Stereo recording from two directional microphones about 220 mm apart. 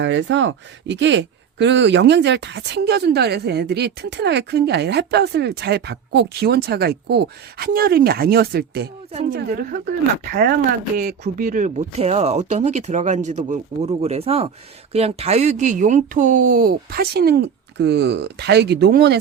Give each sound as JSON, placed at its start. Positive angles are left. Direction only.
{"t": 0.0, "sound": "speech", "side_deg": -55}
{"t": 10.9, "sound": "speech", "side_deg": -35}